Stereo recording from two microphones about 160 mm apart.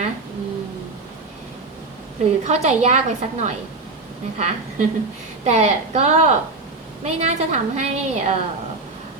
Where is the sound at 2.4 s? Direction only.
45° right (ahead or behind).